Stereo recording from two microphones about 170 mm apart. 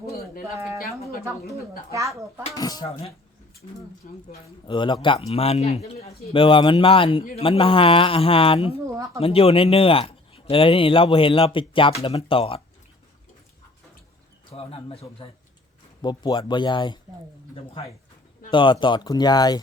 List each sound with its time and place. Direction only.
0.5 s a sound: 15° right (ahead or behind)
1.9 s speech: 20° right (ahead or behind)
2.6 s speech: 25° left (ahead or behind)
4.0 s speech: 55° left (ahead or behind)
4.6 s speech: 30° left (ahead or behind)
14.5 s speech: 35° left (ahead or behind)
16.0 s speech: 25° left (ahead or behind)
18.5 s speech: 30° left (ahead or behind)